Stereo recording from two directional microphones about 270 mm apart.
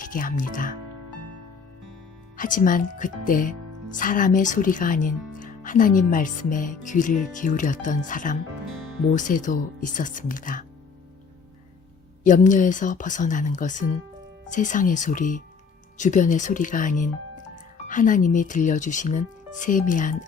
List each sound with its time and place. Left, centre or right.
0.0 s speech: left
2.3 s speech: left
12.2 s speech: left